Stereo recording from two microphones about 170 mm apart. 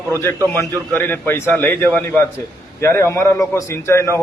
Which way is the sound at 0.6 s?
15° left (ahead or behind).